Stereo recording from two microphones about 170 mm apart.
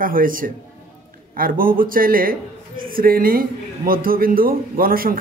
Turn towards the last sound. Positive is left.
turn(degrees=-60)  # may be behind; listen again after turning